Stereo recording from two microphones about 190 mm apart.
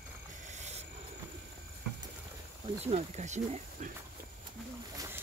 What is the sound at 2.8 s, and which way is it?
Speech, 35° right (ahead or behind).